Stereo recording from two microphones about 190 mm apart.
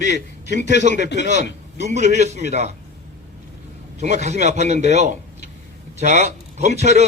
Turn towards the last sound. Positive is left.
turn(degrees=-35)  # may be behind; listen again after turning